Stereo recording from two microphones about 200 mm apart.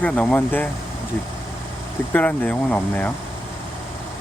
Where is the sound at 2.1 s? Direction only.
5° left (ahead or behind).